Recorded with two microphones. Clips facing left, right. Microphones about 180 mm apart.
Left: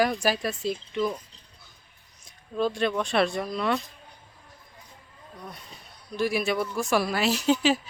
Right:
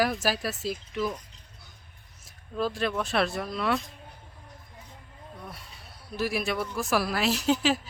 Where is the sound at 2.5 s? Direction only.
Centre (ahead or behind).